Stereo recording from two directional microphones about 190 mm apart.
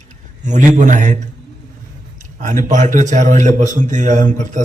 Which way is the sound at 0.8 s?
40° right (ahead or behind).